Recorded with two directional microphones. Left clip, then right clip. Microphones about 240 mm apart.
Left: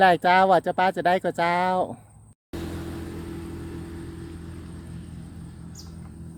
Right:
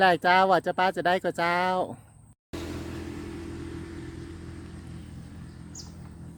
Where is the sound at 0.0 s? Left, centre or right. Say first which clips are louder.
Left 3 dB; centre.